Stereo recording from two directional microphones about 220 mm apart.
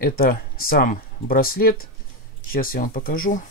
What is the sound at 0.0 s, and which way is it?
Speech, 40° left (ahead or behind).